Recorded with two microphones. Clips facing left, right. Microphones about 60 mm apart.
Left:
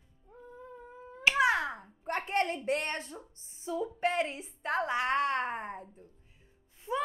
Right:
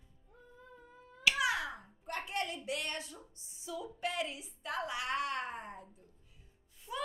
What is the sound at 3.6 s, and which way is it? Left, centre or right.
A woman's voice, left.